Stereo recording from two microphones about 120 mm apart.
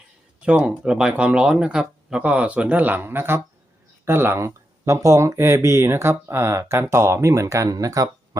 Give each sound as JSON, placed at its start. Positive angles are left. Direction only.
{"t": 0.4, "sound": "speech", "side_deg": -10}